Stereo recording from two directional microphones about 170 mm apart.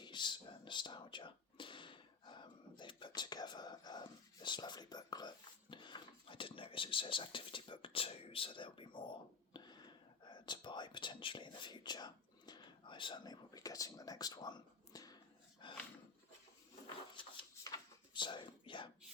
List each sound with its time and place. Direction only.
0.0 s whispering: 25° left (ahead or behind)
5.7 s speech: 30° left (ahead or behind)
15.6 s dog: 30° left (ahead or behind)
16.8 s a sound: 25° left (ahead or behind)